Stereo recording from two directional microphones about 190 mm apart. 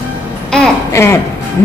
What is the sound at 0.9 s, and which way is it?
Speech, 15° left (ahead or behind).